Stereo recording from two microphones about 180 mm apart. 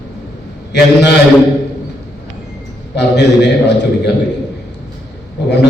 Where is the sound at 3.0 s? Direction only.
70° left (ahead or behind).